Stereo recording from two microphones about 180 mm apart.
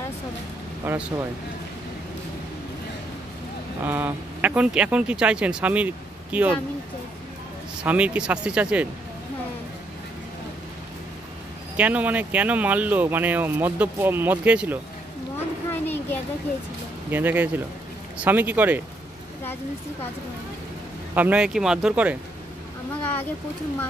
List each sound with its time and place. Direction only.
0.8 s speech: 10° right (ahead or behind)
3.8 s speech: 10° right (ahead or behind)
7.8 s speech: 5° right (ahead or behind)
11.7 s speech: 10° right (ahead or behind)
15.7 s a sound: 10° left (ahead or behind)
17.1 s speech: 10° right (ahead or behind)
21.1 s speech: 10° right (ahead or behind)